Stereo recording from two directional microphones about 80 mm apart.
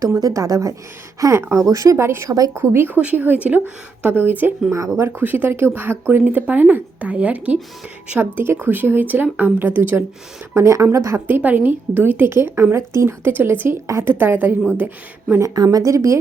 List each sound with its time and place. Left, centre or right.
0.0 s a woman's voice: right
1.2 s speech: right
10.5 s speech: right
11.3 s speech: right
15.5 s a woman's voice: right